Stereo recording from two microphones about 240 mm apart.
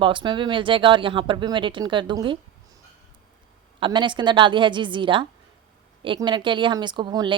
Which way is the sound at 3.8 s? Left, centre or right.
Centre.